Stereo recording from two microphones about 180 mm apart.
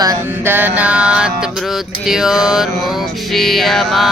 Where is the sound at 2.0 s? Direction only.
Centre (ahead or behind).